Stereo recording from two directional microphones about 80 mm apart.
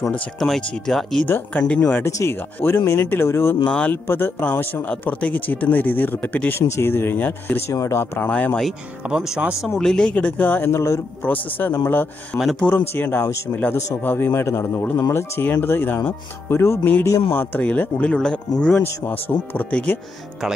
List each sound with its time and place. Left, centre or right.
0.6 s speech: centre
1.2 s speech: left
1.6 s speech: centre
2.0 s speech: left
3.6 s speech: centre
7.7 s speech: left
8.2 s speech: left
9.1 s speech: centre
9.8 s speech: centre; by 10.7 s left
10.7 s speech: left
11.2 s speech: left
12.4 s speech: centre
12.7 s speech: left